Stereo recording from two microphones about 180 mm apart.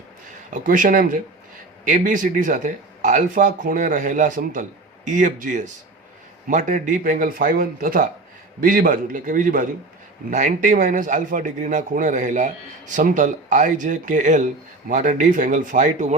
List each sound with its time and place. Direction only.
0.5 s a man's voice: 50° right (ahead or behind)